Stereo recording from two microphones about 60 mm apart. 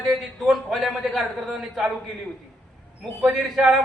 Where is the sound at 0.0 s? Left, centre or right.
Centre.